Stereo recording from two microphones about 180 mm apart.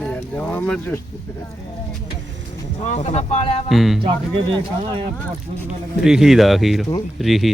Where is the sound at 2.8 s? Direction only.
40° left (ahead or behind).